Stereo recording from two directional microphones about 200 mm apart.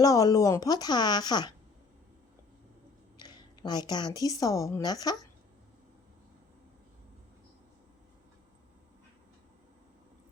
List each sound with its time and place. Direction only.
0.0 s a woman's voice: 20° left (ahead or behind)
3.2 s a woman's voice: 20° left (ahead or behind)